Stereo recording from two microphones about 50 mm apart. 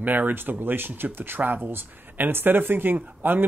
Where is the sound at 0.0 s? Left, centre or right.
Right.